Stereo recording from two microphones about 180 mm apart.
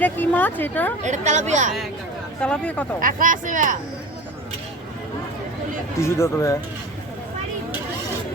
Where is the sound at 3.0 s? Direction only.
50° right (ahead or behind).